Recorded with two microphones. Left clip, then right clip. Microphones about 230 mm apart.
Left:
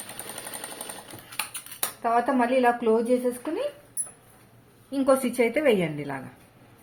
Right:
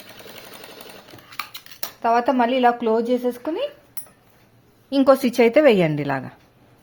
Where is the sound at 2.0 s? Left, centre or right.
Right.